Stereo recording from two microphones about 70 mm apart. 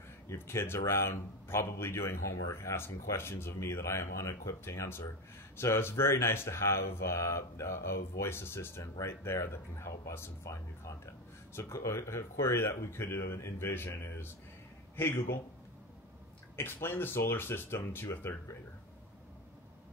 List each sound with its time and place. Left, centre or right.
0.3 s a man's voice: left
11.5 s a man's voice: left
16.5 s a man's voice: left